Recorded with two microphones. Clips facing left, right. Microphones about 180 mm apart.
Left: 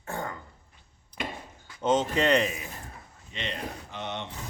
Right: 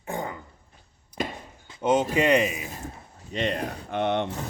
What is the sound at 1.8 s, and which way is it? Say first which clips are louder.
Speech: right 3 dB; 10° right (ahead or behind).